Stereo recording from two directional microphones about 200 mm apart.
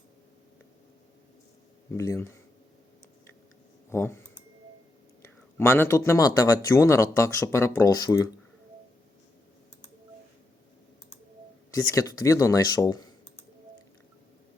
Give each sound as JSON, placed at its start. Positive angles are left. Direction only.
{"t": 1.9, "sound": "speech", "side_deg": 15}
{"t": 3.8, "sound": "speech", "side_deg": 10}
{"t": 5.2, "sound": "speech", "side_deg": 10}
{"t": 11.7, "sound": "speech", "side_deg": 15}